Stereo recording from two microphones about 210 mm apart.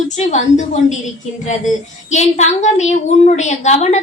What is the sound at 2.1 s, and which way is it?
A woman's voice, 35° left (ahead or behind).